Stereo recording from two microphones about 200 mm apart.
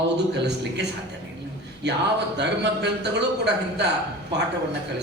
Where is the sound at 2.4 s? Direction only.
60° right (ahead or behind).